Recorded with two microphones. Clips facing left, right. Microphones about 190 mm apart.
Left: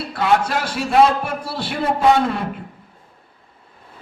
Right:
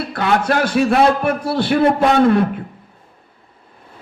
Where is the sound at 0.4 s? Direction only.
60° right (ahead or behind).